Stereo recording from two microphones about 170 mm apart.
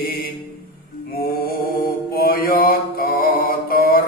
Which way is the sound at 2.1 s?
60° left (ahead or behind).